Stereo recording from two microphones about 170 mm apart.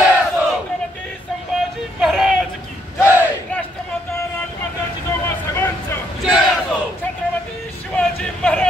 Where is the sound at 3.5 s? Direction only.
10° left (ahead or behind).